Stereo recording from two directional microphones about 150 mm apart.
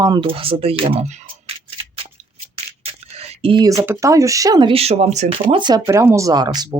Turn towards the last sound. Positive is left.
turn(degrees=-25)  # may be behind; listen again after turning